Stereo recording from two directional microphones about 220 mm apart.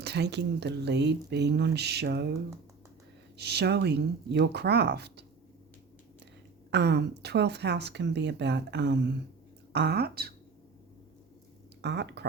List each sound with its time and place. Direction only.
0.0 s speech: 50° right (ahead or behind)
3.3 s speech: 50° right (ahead or behind)
6.7 s speech: 50° right (ahead or behind)
11.8 s speech: 50° right (ahead or behind)